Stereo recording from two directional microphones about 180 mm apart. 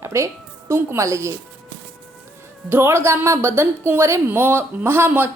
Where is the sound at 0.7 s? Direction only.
15° right (ahead or behind).